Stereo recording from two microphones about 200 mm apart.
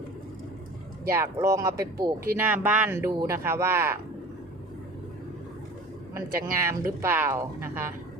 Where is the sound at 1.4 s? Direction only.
15° right (ahead or behind).